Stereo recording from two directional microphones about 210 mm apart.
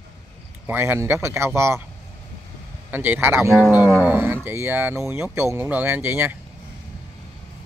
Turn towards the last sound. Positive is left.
turn(degrees=-10)  # may be behind; listen again after turning